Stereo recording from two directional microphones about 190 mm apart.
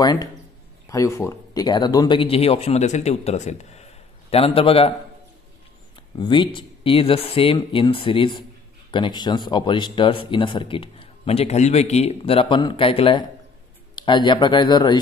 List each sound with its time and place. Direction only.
0.0 s speech: 20° left (ahead or behind)
6.1 s speech: 25° left (ahead or behind)